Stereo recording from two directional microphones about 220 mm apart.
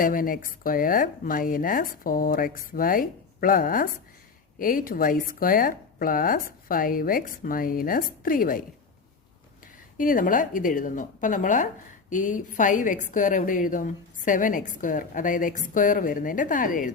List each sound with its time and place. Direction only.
0.0 s a woman's voice: 40° left (ahead or behind)
10.0 s a woman's voice: 40° left (ahead or behind)